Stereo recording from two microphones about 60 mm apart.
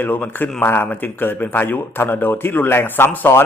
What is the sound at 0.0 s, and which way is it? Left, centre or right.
A man's voice, left.